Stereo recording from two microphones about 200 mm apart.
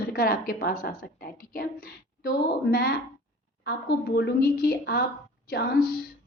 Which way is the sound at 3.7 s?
55° left (ahead or behind).